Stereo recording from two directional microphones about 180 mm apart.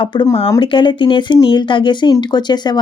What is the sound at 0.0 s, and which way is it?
Speech, 25° left (ahead or behind).